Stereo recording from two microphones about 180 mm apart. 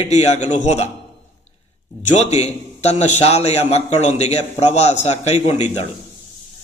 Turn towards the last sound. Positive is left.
turn(degrees=40)  # may be behind; listen again after turning